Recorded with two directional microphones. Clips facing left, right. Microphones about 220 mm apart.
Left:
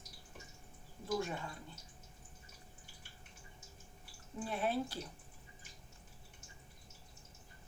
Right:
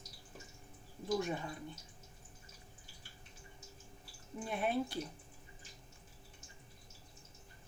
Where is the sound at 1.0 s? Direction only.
15° right (ahead or behind).